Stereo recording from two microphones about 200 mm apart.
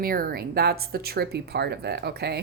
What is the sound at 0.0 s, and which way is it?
A woman's voice, 50° right (ahead or behind).